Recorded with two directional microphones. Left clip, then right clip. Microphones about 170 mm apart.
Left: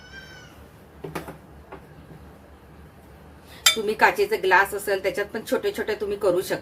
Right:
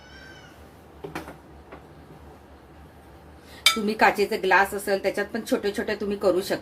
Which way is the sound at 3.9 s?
25° right (ahead or behind).